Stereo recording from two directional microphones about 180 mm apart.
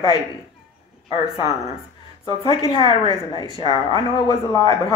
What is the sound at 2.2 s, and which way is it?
A woman's voice, 30° left (ahead or behind).